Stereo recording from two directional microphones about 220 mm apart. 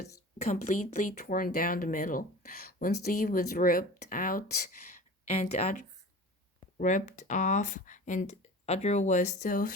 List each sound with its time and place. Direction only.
0.5 s speech: 35° left (ahead or behind)